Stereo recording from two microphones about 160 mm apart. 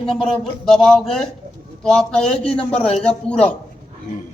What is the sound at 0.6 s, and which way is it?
A man's voice, 5° left (ahead or behind).